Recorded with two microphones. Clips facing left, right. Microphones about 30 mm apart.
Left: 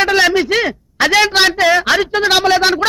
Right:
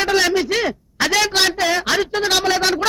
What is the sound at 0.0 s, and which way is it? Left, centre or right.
A man's voice, left.